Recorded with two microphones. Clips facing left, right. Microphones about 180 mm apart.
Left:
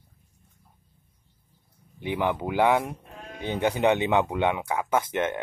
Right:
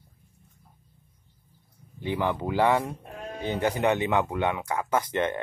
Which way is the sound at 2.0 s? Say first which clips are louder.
Left 1 dB; 15° left (ahead or behind).